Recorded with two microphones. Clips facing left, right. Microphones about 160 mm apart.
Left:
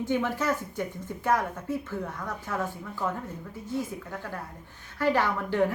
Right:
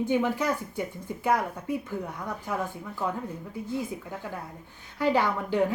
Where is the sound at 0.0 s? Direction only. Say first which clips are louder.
Right 2 dB; 15° right (ahead or behind).